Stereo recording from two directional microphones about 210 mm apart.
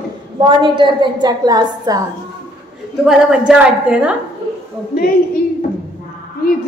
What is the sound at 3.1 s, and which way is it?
A woman's voice, 5° right (ahead or behind).